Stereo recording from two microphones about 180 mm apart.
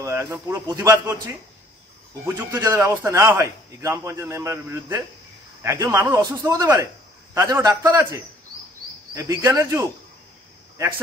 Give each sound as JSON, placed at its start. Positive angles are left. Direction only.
{"t": 0.0, "sound": "a man's voice", "side_deg": -15}
{"t": 2.2, "sound": "a man's voice", "side_deg": -15}